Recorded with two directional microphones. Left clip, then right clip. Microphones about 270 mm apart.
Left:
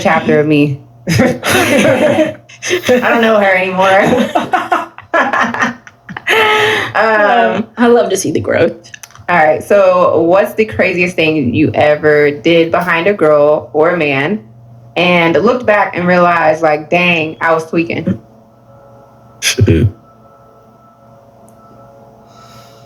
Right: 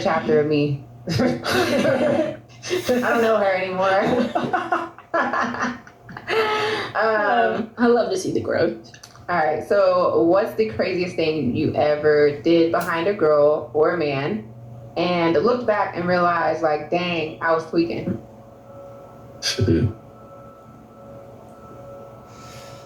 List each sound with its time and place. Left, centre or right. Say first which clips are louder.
0.0 s speech: left 8 dB; left
6.2 s a sound: left 11 dB; left
8.4 s speech: left 11 dB; left